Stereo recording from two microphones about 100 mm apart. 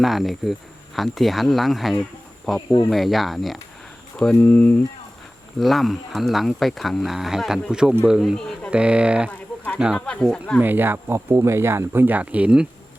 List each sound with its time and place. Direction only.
0.0 s speech: centre (ahead or behind)
4.3 s speech: 15° left (ahead or behind)
5.5 s speech: centre (ahead or behind)
8.4 s a sound: 5° left (ahead or behind)
8.7 s speech: 10° right (ahead or behind)
10.1 s speech: 5° left (ahead or behind)
10.6 s speech: 20° right (ahead or behind)